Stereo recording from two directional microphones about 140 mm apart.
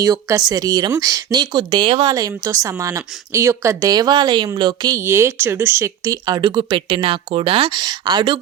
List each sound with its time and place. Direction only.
0.0 s speech: 25° right (ahead or behind)